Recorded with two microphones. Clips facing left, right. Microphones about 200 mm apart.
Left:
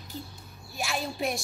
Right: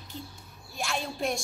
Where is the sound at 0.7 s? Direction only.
5° left (ahead or behind).